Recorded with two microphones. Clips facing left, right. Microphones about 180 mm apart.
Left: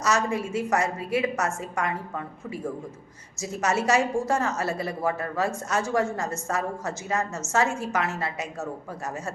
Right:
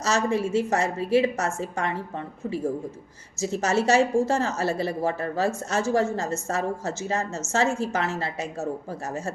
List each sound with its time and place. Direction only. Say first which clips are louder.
0.0 s a woman's voice: right 2 dB; 25° right (ahead or behind)